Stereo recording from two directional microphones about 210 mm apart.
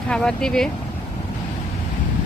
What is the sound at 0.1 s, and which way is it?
Speech, 5° left (ahead or behind).